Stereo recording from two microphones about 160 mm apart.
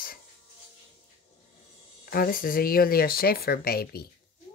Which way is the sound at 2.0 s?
65° left (ahead or behind).